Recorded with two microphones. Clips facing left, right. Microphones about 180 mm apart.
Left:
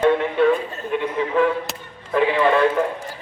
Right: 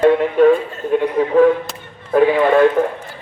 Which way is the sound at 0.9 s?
40° right (ahead or behind).